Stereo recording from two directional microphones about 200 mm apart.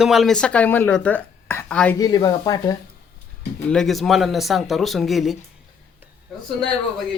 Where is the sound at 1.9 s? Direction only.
20° left (ahead or behind).